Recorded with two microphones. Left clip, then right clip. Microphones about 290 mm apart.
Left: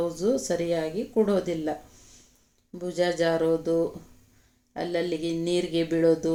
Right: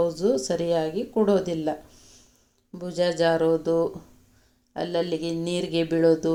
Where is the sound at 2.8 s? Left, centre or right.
Centre.